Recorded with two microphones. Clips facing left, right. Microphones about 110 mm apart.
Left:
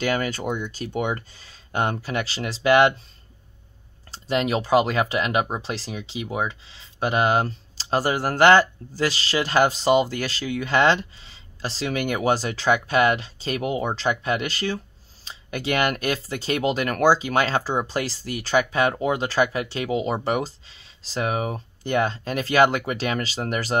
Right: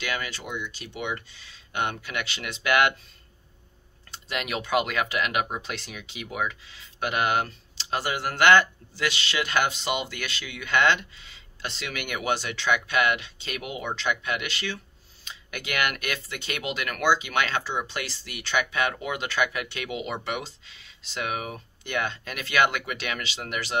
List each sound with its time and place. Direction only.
0.0 s speech: 45° left (ahead or behind)
4.1 s speech: 30° left (ahead or behind)